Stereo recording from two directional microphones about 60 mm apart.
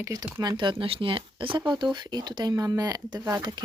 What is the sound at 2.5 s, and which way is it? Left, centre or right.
Speech, right.